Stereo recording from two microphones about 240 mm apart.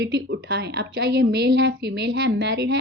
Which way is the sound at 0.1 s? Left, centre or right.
Right.